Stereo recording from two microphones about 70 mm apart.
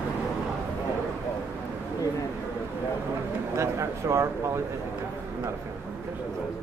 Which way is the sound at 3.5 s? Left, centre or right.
Right.